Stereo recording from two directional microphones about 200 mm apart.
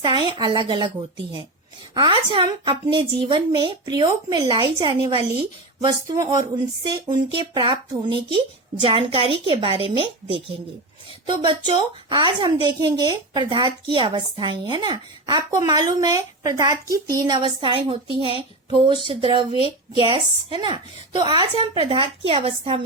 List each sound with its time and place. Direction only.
0.0 s a woman's voice: 20° right (ahead or behind)
2.0 s a woman's voice: 25° right (ahead or behind)